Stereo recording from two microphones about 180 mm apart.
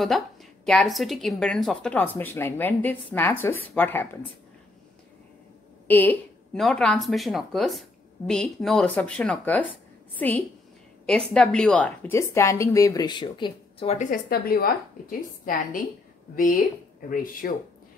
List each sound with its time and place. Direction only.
0.0 s a woman's voice: centre (ahead or behind)
5.9 s a sound: 10° left (ahead or behind)
6.6 s a woman's voice: 5° left (ahead or behind); by 14.0 s 35° left (ahead or behind)
14.1 s a woman's voice: 55° left (ahead or behind)